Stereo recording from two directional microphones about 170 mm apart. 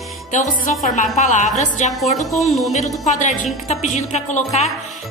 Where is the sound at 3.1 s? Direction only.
45° left (ahead or behind).